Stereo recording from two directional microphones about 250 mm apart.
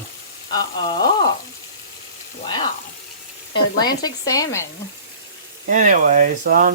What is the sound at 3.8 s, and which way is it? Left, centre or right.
Speech, centre.